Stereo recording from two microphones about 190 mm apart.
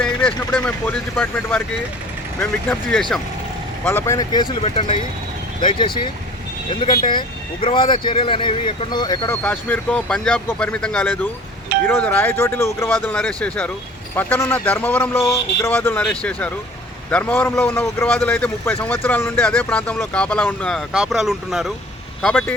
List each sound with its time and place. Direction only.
0.0 s a sound: 5° left (ahead or behind)
0.3 s a man's voice: 10° left (ahead or behind); by 6.1 s 25° left (ahead or behind)
7.1 s a man's voice: 25° left (ahead or behind); by 22.5 s 5° left (ahead or behind)